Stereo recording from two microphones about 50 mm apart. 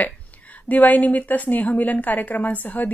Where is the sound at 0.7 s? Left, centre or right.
Left.